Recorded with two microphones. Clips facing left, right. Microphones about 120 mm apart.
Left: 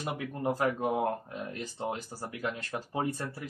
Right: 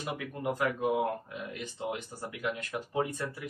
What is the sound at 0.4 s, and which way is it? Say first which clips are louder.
A man's voice: left 1 dB; 30° left (ahead or behind).